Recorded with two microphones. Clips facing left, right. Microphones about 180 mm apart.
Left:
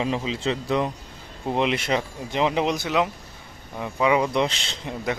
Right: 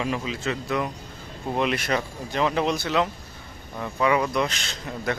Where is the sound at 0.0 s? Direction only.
25° left (ahead or behind).